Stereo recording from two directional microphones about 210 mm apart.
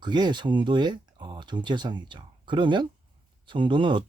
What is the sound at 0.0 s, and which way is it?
Speech, 20° right (ahead or behind).